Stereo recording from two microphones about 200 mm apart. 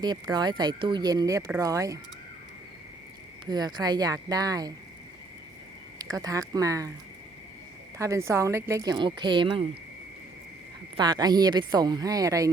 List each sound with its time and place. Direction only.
0.0 s speech: 20° right (ahead or behind)
3.4 s speech: 20° right (ahead or behind)
6.0 s speech: 20° right (ahead or behind)
7.9 s speech: 15° right (ahead or behind)
10.9 s speech: 20° right (ahead or behind)